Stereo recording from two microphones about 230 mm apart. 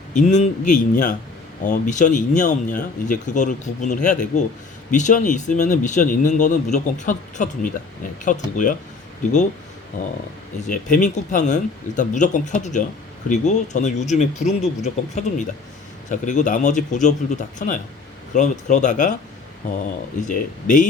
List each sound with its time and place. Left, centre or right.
0.1 s speech: left
10.7 s speech: left
20.2 s speech: left